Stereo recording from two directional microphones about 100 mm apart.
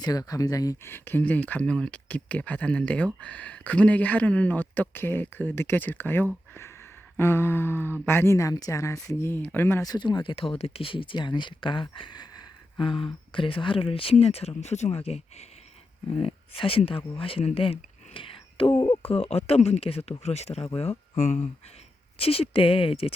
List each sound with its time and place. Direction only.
0.0 s speech: 35° left (ahead or behind)
0.9 s speech: 20° left (ahead or behind)
6.5 s a sound: 25° left (ahead or behind)
8.0 s speech: 25° left (ahead or behind)
9.0 s a sound: 25° left (ahead or behind)
9.8 s speech: 45° left (ahead or behind)
10.3 s speech: 75° left (ahead or behind); by 12.5 s 45° left (ahead or behind)
12.8 s speech: 55° left (ahead or behind); by 15.4 s 90° left
16.1 s speech: 65° left (ahead or behind)
18.8 s speech: 55° left (ahead or behind)
19.1 s speech: 90° left
20.2 s speech: 90° left
22.2 s speech: 70° left (ahead or behind)